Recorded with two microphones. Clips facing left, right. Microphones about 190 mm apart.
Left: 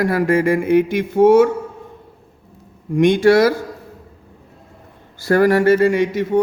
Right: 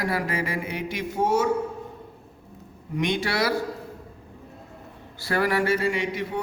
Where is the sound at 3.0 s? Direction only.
50° left (ahead or behind).